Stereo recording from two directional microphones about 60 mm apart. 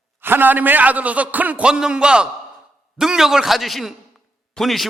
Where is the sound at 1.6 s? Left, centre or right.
Centre.